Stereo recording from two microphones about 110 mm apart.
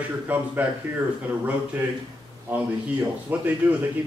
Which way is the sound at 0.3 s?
15° right (ahead or behind).